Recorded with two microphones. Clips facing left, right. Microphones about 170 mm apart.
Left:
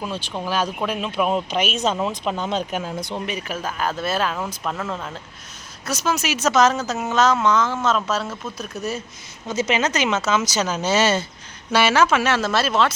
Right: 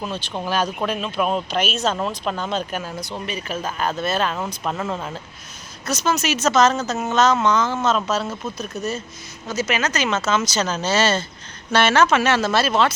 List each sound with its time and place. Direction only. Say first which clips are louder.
0.0 s speech: even; 5° left (ahead or behind)
4.7 s speech: right 2 dB; 10° right (ahead or behind)
5.9 s speech: right 2 dB; 10° left (ahead or behind)
9.5 s speech: left 2 dB; 25° left (ahead or behind); by 12.9 s centre (ahead or behind)